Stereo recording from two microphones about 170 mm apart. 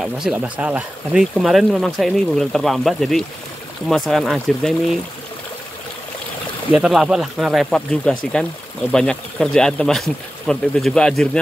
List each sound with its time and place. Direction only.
0.0 s speech: 5° right (ahead or behind)
6.7 s speech: 5° right (ahead or behind)